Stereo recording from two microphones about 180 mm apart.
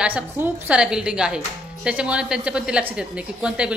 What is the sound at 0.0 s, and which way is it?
A woman's voice, 10° right (ahead or behind).